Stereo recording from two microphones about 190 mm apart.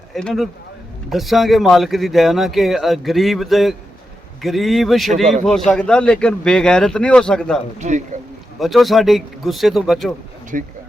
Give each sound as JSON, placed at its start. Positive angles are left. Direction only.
{"t": 0.1, "sound": "speech", "side_deg": 0}
{"t": 7.8, "sound": "speech", "side_deg": -40}
{"t": 8.5, "sound": "speech", "side_deg": 0}
{"t": 10.5, "sound": "speech", "side_deg": -45}